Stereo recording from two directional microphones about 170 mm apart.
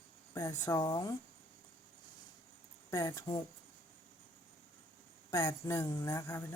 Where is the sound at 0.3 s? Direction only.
20° left (ahead or behind).